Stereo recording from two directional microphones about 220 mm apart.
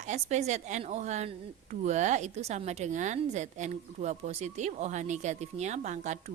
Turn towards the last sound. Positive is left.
turn(degrees=-30)  # may be behind; listen again after turning